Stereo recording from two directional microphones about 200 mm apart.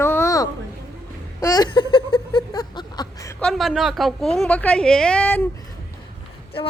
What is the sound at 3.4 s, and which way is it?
A woman's voice, centre (ahead or behind).